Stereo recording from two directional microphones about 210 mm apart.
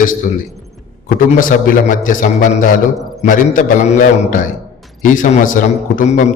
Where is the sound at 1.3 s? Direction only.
40° left (ahead or behind).